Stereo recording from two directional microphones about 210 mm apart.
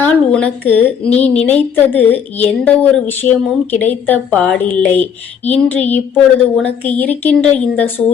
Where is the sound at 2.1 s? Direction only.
30° left (ahead or behind).